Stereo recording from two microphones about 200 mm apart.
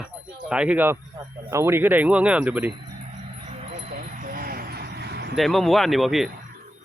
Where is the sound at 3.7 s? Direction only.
30° right (ahead or behind); by 5.4 s 55° right (ahead or behind).